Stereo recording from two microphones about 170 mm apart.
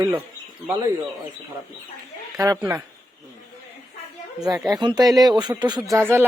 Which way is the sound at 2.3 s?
20° right (ahead or behind).